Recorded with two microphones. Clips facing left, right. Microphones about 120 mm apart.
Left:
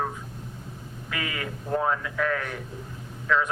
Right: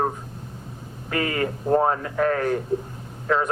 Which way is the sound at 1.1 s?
45° right (ahead or behind).